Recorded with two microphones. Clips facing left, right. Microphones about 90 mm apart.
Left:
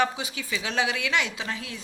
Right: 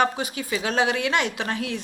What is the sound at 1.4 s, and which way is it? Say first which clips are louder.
Speech: right 6 dB; 65° right (ahead or behind).